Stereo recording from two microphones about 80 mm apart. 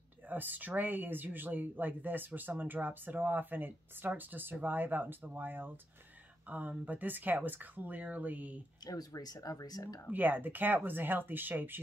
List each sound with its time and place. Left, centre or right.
0.3 s speech: right
8.8 s speech: left
10.1 s speech: right